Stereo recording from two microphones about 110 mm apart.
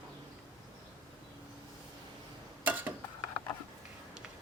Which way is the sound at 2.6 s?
15° right (ahead or behind).